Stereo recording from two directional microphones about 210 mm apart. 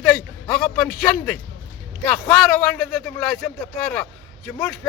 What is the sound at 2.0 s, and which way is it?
Speech, 5° left (ahead or behind).